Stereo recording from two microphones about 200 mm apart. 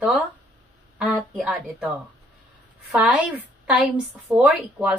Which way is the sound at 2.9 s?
5° right (ahead or behind).